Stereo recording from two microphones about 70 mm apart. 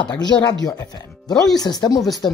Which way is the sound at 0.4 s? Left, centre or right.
Left.